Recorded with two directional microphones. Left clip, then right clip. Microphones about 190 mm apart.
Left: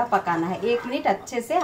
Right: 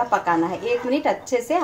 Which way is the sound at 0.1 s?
45° right (ahead or behind).